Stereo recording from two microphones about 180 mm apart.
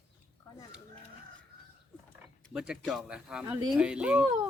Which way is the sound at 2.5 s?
5° right (ahead or behind).